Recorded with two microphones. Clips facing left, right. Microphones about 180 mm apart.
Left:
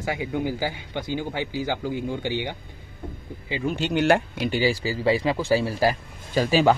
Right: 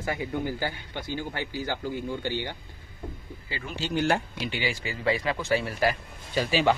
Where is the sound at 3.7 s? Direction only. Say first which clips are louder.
Left 5 dB; 70° left (ahead or behind).